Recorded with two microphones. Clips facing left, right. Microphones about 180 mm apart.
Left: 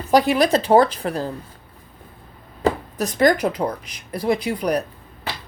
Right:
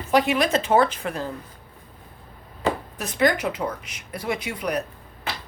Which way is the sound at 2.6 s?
40° left (ahead or behind).